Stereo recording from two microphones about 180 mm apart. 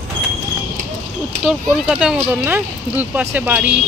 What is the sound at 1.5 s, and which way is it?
Speech, 5° right (ahead or behind).